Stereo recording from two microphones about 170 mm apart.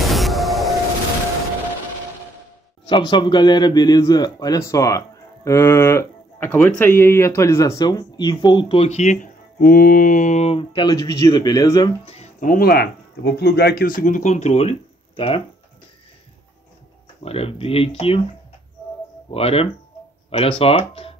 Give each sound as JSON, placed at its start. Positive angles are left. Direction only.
{"t": 0.1, "sound": "music", "side_deg": 0}
{"t": 2.9, "sound": "a man's voice", "side_deg": 25}
{"t": 12.0, "sound": "speech", "side_deg": 35}
{"t": 12.4, "sound": "speech", "side_deg": 60}
{"t": 17.2, "sound": "speech", "side_deg": 35}
{"t": 19.3, "sound": "speech", "side_deg": 35}